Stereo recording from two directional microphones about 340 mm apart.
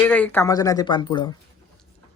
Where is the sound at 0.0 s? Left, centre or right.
Centre.